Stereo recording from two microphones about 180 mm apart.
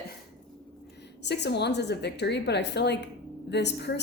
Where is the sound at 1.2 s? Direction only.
70° left (ahead or behind).